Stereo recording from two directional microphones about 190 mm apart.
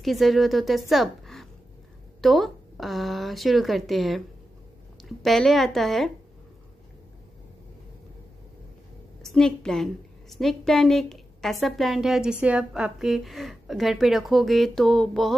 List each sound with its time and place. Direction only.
0.0 s a woman's voice: centre (ahead or behind)
5.2 s a woman's voice: centre (ahead or behind)
9.2 s a woman's voice: centre (ahead or behind)